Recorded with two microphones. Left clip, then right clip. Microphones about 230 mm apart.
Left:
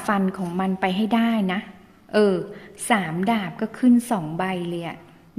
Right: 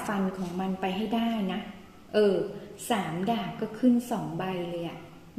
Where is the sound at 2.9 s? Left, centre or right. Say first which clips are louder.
Left 7 dB; left.